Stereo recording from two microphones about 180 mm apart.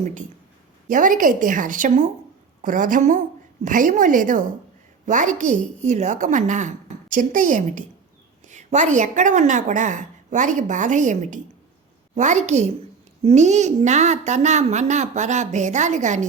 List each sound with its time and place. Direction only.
0.0 s a woman's voice: 45° right (ahead or behind)